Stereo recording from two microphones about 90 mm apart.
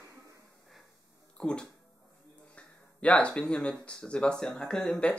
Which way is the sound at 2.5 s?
15° left (ahead or behind).